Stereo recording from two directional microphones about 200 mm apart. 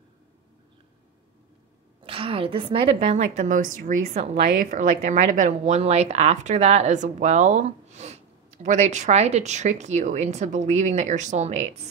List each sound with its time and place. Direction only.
2.0 s a woman's voice: 25° right (ahead or behind)